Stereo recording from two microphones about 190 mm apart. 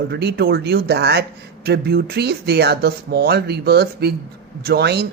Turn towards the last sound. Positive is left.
turn(degrees=-60)  # may be behind; listen again after turning